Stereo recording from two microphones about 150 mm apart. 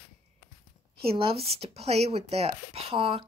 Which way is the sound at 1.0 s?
40° right (ahead or behind).